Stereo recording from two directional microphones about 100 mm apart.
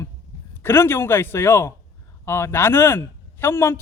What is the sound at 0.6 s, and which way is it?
A man's voice, 25° left (ahead or behind).